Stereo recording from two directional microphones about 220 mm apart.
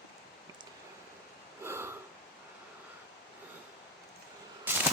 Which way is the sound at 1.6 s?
10° right (ahead or behind).